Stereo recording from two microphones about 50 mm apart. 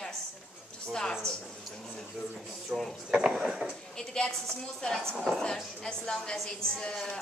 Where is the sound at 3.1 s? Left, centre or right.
Centre.